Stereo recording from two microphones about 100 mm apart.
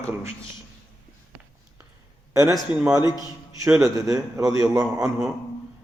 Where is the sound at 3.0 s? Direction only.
40° left (ahead or behind).